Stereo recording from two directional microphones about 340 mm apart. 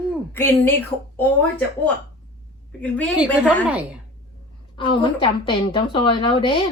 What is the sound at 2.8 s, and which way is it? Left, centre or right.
Speech, centre.